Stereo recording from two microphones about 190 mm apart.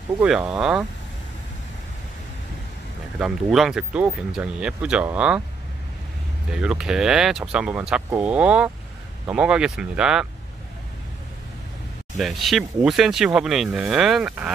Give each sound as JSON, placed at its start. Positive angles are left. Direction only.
{"t": 0.2, "sound": "speech", "side_deg": -5}
{"t": 3.2, "sound": "speech", "side_deg": -5}
{"t": 6.5, "sound": "speech", "side_deg": -5}
{"t": 12.2, "sound": "speech", "side_deg": 0}